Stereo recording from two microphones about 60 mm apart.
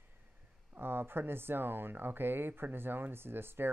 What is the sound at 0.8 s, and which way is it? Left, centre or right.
Speech, right.